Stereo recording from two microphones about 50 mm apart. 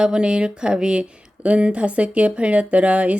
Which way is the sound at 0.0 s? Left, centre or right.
Centre.